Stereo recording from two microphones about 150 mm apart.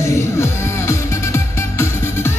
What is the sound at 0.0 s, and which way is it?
Music, 20° left (ahead or behind).